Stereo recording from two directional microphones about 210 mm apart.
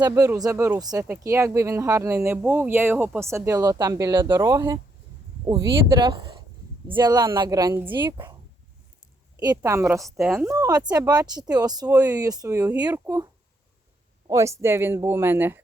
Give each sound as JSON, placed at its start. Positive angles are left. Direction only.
{"t": 0.0, "sound": "speech", "side_deg": -15}
{"t": 9.6, "sound": "speech", "side_deg": -10}
{"t": 14.3, "sound": "speech", "side_deg": -15}